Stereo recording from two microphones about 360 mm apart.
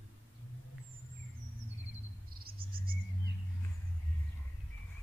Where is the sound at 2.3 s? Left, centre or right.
Right.